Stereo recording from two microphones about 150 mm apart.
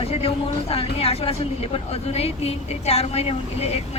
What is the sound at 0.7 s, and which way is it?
A woman's voice, 40° left (ahead or behind).